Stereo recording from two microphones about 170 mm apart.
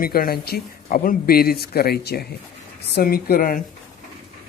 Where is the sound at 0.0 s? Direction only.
60° left (ahead or behind).